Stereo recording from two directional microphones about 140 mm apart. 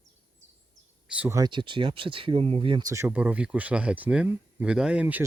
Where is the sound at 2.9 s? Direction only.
15° right (ahead or behind).